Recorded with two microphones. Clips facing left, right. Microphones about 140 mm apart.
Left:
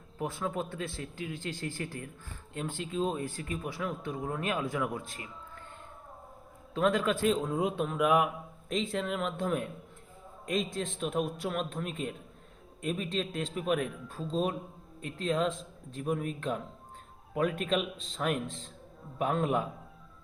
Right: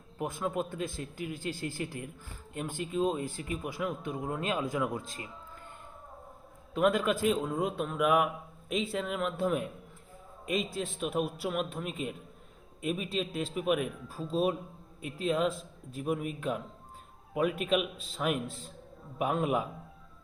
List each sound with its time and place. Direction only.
0.2 s speech: 15° right (ahead or behind)
4.9 s a man's voice: 30° right (ahead or behind)
6.7 s a man's voice: 10° right (ahead or behind)